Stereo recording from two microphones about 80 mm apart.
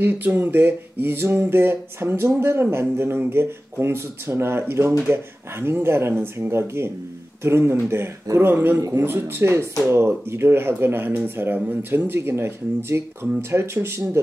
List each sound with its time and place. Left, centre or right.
0.0 s speech: right